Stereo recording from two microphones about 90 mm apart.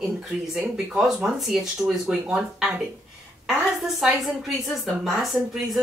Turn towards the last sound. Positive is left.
turn(degrees=-5)  # may be behind; listen again after turning